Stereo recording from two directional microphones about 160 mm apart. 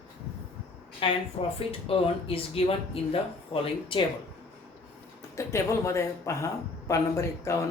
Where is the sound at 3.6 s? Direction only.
30° left (ahead or behind).